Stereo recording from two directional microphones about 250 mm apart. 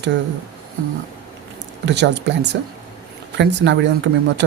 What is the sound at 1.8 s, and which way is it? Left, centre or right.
Speech, right.